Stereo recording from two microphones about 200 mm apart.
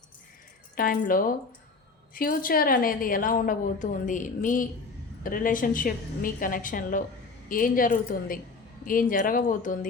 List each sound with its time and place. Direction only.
0.8 s a woman's voice: 45° left (ahead or behind)